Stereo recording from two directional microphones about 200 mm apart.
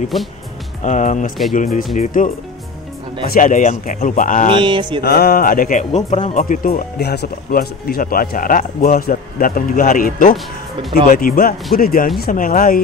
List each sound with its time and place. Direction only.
0.1 s speech: centre (ahead or behind)
0.8 s speech: 35° left (ahead or behind)
3.3 s speech: 40° left (ahead or behind)
4.6 s music: 25° right (ahead or behind)
5.0 s speech: 50° left (ahead or behind); by 6.4 s 30° left (ahead or behind)
6.4 s speech: 45° left (ahead or behind)